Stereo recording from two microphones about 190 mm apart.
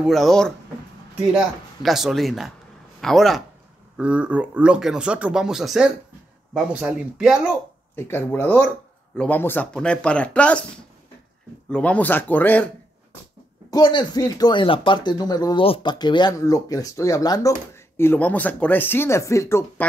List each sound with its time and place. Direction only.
0.0 s speech: centre (ahead or behind)
7.9 s speech: 10° left (ahead or behind)
11.7 s speech: 5° left (ahead or behind)
13.7 s speech: 20° left (ahead or behind)